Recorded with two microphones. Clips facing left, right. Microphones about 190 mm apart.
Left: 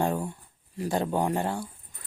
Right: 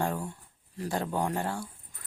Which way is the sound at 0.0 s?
20° left (ahead or behind).